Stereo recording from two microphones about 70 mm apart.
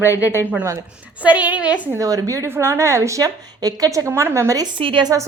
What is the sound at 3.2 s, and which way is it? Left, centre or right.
A woman's voice, right.